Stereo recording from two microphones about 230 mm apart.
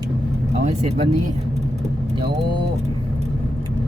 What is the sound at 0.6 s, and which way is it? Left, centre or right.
Music, right.